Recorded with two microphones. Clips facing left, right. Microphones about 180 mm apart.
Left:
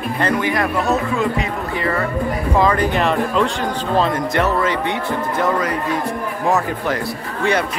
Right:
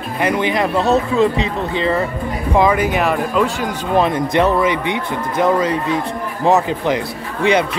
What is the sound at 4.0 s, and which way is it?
Speech, 15° right (ahead or behind).